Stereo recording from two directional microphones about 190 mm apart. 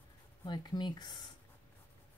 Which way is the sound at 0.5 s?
25° left (ahead or behind).